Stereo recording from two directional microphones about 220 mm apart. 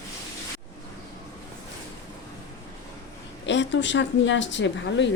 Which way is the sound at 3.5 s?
55° left (ahead or behind).